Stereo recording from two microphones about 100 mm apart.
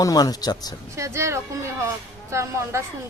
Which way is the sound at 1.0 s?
30° right (ahead or behind).